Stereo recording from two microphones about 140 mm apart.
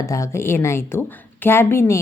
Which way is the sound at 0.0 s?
20° left (ahead or behind).